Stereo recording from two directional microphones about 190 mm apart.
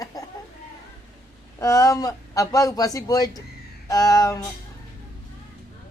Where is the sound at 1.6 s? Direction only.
15° left (ahead or behind).